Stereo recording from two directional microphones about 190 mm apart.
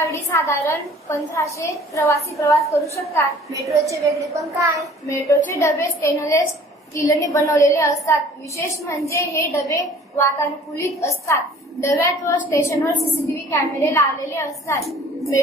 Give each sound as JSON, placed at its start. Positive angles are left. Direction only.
{"t": 0.0, "sound": "a woman's voice", "side_deg": 15}
{"t": 3.7, "sound": "a woman's voice", "side_deg": -15}
{"t": 5.0, "sound": "a woman's voice", "side_deg": 15}